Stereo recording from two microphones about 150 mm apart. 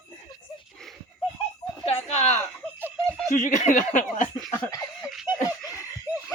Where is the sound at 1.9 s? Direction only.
45° left (ahead or behind).